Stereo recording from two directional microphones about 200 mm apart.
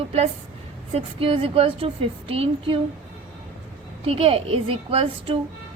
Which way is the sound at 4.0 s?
30° right (ahead or behind).